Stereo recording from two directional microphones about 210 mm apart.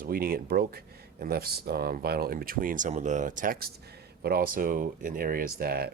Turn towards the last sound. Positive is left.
turn(degrees=-45)  # may be behind; listen again after turning